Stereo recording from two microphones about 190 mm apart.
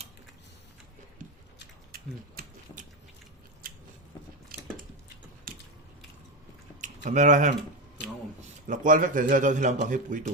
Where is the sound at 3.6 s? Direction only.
50° right (ahead or behind).